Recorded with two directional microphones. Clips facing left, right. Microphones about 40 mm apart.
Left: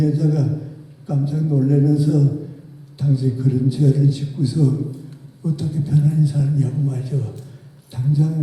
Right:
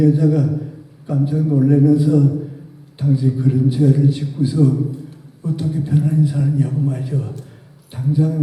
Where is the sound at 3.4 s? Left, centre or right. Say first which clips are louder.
Right 3 dB; right.